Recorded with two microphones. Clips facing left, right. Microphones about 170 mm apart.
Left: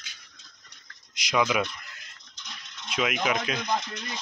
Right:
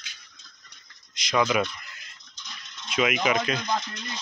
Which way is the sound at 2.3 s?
60° left (ahead or behind).